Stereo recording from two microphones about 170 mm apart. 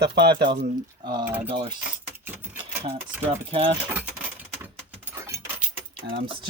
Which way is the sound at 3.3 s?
35° right (ahead or behind).